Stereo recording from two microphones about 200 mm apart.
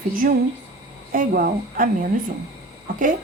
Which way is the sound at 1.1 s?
45° right (ahead or behind).